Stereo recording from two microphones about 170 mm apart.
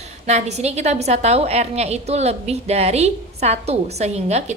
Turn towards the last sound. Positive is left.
turn(degrees=-40)  # may be behind; listen again after turning